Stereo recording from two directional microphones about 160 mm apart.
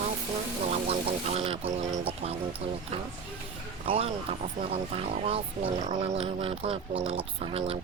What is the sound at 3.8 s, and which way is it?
Speech, 35° right (ahead or behind).